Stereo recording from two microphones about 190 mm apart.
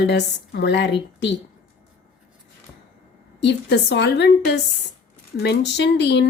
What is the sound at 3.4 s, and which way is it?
A woman's voice, 65° left (ahead or behind).